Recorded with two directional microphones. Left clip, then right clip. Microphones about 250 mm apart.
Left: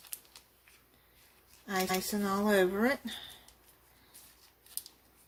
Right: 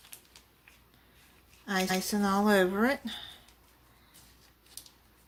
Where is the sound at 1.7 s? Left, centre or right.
Centre.